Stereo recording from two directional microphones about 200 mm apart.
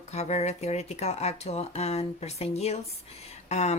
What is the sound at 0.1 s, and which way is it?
Speech, 35° left (ahead or behind).